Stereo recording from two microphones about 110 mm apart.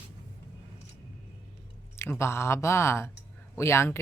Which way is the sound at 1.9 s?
25° left (ahead or behind).